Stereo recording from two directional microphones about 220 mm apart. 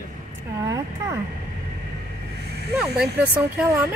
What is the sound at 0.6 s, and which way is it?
Speech, 15° right (ahead or behind).